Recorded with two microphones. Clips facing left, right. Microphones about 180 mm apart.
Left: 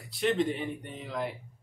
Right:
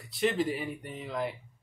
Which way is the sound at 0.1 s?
Centre (ahead or behind).